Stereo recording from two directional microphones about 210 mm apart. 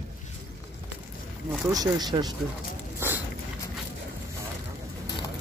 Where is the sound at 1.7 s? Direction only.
20° right (ahead or behind).